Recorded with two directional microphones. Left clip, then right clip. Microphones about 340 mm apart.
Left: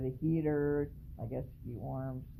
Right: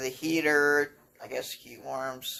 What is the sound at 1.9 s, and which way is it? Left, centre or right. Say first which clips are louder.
Speech: right 12 dB; centre.